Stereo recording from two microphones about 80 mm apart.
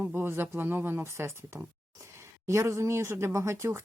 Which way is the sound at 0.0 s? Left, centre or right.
Right.